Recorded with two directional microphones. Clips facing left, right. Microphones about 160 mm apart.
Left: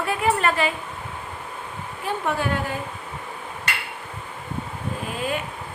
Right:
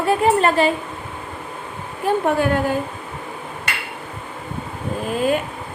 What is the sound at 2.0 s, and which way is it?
Speech, 45° right (ahead or behind).